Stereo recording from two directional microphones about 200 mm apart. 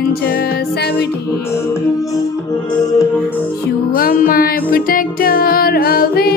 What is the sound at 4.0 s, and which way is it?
Music, 45° left (ahead or behind).